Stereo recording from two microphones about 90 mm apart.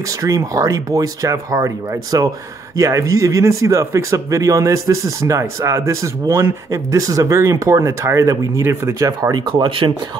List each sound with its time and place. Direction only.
0.2 s speech: 35° right (ahead or behind)
9.3 s speech: 55° right (ahead or behind)